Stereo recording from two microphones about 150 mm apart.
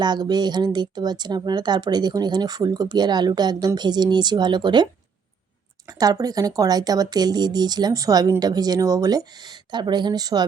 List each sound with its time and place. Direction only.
0.0 s speech: 30° right (ahead or behind)
5.9 s speech: 25° right (ahead or behind)